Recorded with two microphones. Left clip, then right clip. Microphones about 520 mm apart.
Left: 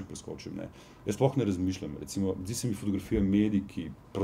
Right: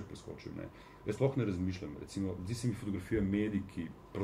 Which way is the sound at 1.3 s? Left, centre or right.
Right.